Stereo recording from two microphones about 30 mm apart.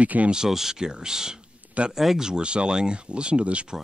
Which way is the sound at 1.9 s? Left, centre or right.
Centre.